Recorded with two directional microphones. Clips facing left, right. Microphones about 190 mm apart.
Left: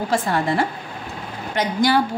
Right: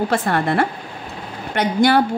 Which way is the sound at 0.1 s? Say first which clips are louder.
Right 2 dB; 60° right (ahead or behind).